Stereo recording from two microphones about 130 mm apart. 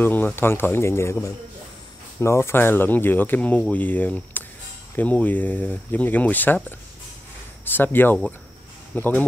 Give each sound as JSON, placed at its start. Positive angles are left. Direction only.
{"t": 0.0, "sound": "speech", "side_deg": 15}
{"t": 2.1, "sound": "speech", "side_deg": 20}
{"t": 7.6, "sound": "speech", "side_deg": 15}